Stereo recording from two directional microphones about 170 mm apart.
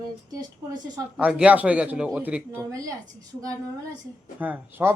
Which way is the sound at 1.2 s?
5° right (ahead or behind).